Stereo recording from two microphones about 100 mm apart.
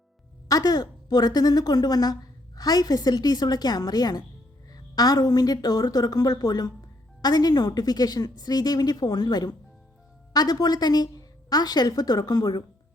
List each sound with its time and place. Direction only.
0.4 s a woman's voice: 35° left (ahead or behind)